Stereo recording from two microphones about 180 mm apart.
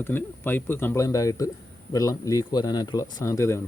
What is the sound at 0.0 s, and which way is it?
Speech, 10° left (ahead or behind).